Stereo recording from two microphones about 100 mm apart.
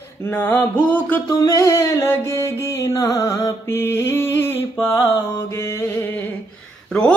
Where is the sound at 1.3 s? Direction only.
30° left (ahead or behind).